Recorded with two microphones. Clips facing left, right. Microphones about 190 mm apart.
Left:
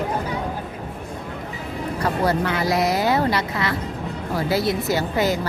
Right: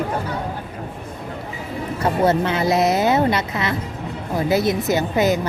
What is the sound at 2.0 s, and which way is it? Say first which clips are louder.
Speech: right 4 dB; 25° right (ahead or behind).